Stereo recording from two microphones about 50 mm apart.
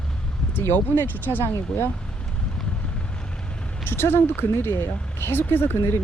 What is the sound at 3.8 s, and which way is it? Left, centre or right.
Speech, left.